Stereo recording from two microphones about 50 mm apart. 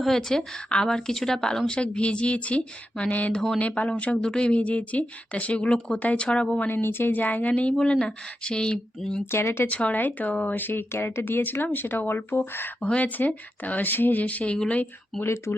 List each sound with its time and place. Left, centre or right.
0.0 s speech: centre
6.8 s speech: left; by 9.2 s centre
9.3 s speech: left
9.6 s speech: left
12.8 s speech: left
15.1 s speech: centre